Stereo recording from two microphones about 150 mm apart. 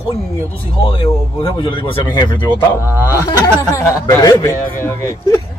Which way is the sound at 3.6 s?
20° left (ahead or behind).